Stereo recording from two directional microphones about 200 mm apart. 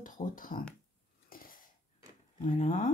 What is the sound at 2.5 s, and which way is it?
Speech, 35° left (ahead or behind).